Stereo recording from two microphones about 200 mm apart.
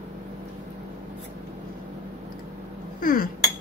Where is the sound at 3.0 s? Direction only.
45° left (ahead or behind).